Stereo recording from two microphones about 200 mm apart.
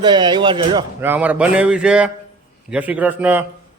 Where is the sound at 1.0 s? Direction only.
10° right (ahead or behind).